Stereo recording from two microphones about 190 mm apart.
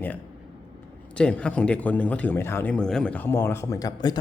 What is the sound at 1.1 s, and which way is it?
A man's voice, 5° left (ahead or behind).